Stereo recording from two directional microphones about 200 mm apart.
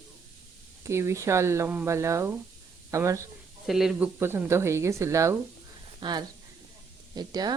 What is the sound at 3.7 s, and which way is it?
Speech, 5° right (ahead or behind).